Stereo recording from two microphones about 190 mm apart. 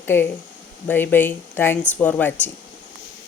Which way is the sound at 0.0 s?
10° left (ahead or behind).